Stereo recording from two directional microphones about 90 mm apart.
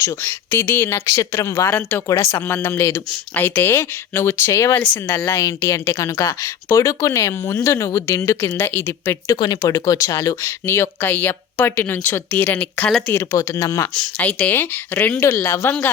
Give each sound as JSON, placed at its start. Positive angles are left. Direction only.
{"t": 0.0, "sound": "speech", "side_deg": 30}
{"t": 9.4, "sound": "speech", "side_deg": 50}
{"t": 9.7, "sound": "speech", "side_deg": 35}
{"t": 13.1, "sound": "speech", "side_deg": 35}
{"t": 14.2, "sound": "speech", "side_deg": 15}